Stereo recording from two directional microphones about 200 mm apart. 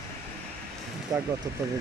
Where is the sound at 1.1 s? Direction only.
15° right (ahead or behind).